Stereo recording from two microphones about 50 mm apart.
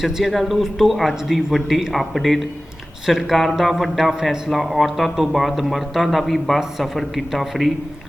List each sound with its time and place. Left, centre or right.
0.0 s speech: centre